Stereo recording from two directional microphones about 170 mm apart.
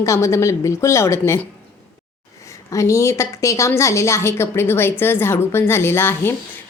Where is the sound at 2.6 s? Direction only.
15° left (ahead or behind).